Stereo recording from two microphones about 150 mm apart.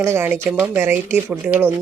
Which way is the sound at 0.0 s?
15° right (ahead or behind).